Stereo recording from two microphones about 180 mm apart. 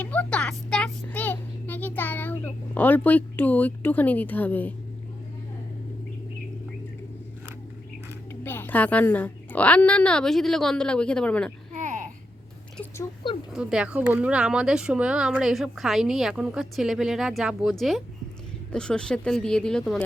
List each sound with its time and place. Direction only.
0.0 s a sound: 10° left (ahead or behind)
8.3 s a woman's voice: 10° left (ahead or behind)
11.7 s babbling: 40° right (ahead or behind)
13.5 s speech: 5° right (ahead or behind)